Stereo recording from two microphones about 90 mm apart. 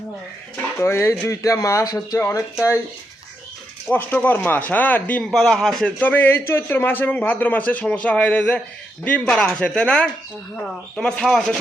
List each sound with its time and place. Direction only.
0.8 s a man's voice: 30° left (ahead or behind); by 2.1 s 45° left (ahead or behind)
2.1 s a man's voice: 25° left (ahead or behind)
3.9 s a man's voice: 25° left (ahead or behind)
5.3 s a man's voice: 5° left (ahead or behind)
6.0 s a man's voice: 20° left (ahead or behind); by 11.5 s 5° left (ahead or behind)